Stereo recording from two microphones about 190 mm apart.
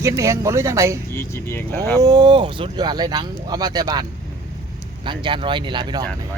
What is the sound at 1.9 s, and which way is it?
Speech, 20° right (ahead or behind).